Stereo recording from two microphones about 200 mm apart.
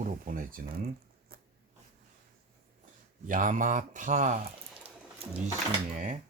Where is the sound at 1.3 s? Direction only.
50° right (ahead or behind).